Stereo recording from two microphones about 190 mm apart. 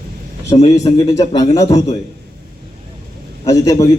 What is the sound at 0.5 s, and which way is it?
A man's voice, 20° left (ahead or behind).